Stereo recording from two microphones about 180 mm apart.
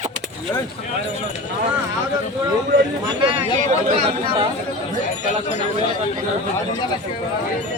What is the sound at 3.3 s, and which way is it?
Speech, 35° right (ahead or behind).